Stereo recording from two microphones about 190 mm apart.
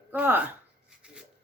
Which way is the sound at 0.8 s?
5° right (ahead or behind).